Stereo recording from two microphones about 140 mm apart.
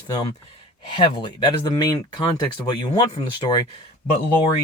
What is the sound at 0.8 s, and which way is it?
Speech, 35° left (ahead or behind).